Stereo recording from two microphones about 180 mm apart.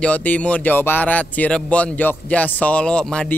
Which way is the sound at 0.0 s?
10° left (ahead or behind).